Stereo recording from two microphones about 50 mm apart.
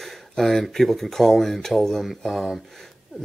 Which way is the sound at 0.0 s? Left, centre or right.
Centre.